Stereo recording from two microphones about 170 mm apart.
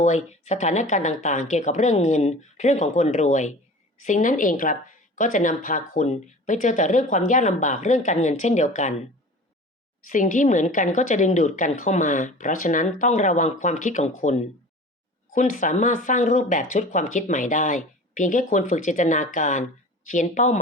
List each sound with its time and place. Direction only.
0.0 s speech: 45° left (ahead or behind)
10.1 s speech: 50° left (ahead or behind)